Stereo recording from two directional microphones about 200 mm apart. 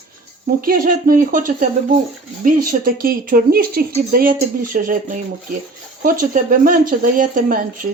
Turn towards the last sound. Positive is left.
turn(degrees=-45)  # may be behind; listen again after turning